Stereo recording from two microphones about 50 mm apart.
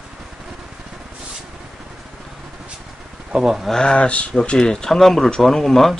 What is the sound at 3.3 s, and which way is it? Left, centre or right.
Speech, centre.